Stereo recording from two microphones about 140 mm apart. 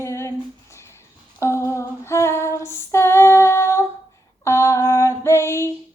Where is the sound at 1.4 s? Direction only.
20° left (ahead or behind).